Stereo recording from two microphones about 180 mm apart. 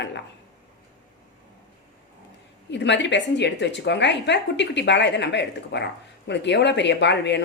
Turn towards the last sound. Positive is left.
turn(degrees=70)  # may be behind; listen again after turning